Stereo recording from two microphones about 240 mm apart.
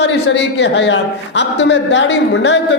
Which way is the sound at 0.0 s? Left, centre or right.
Left.